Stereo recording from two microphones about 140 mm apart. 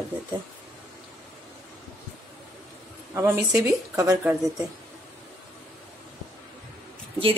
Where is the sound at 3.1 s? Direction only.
20° right (ahead or behind).